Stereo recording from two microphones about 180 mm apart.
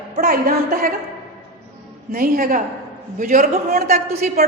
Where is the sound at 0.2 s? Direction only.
55° right (ahead or behind).